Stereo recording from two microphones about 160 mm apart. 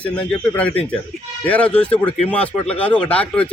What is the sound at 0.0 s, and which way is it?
Speech, 5° left (ahead or behind).